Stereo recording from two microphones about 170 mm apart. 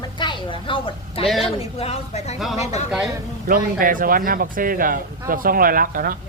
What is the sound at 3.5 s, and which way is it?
Speech, 55° right (ahead or behind).